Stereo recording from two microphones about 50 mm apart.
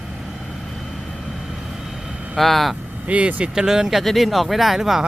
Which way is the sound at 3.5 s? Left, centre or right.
Centre.